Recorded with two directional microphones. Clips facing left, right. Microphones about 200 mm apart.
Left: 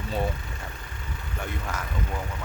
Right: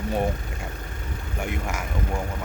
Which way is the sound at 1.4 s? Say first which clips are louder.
Right 4 dB; 10° right (ahead or behind).